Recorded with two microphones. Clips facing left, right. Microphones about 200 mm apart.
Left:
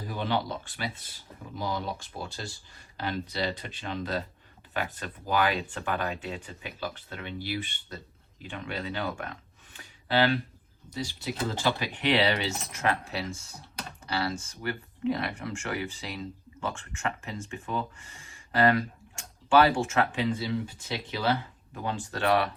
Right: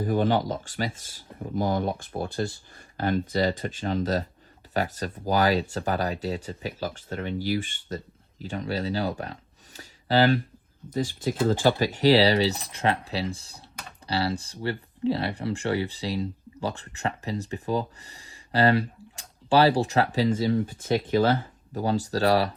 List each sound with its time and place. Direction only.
0.0 s speech: 50° right (ahead or behind)